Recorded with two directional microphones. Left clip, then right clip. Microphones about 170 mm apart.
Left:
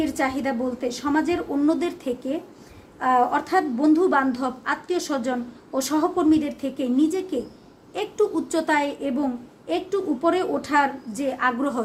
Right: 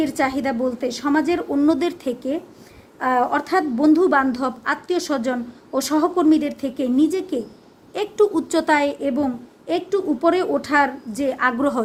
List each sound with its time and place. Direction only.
0.0 s a woman's voice: 45° right (ahead or behind)